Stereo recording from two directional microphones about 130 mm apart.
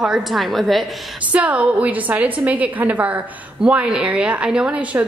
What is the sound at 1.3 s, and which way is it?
A woman's voice, 10° right (ahead or behind).